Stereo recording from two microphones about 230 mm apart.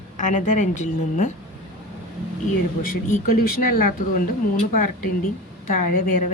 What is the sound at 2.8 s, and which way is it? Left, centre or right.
A woman's voice, left.